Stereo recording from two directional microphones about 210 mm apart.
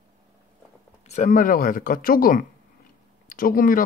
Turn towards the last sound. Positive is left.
turn(degrees=40)  # may be behind; listen again after turning